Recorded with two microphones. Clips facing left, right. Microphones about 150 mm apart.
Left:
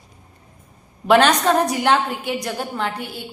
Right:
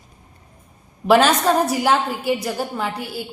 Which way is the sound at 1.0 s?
5° right (ahead or behind).